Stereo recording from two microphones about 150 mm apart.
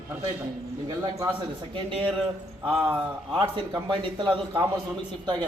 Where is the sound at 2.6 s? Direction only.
35° right (ahead or behind).